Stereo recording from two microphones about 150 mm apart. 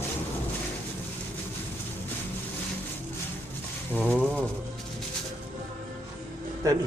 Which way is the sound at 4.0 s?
5° left (ahead or behind).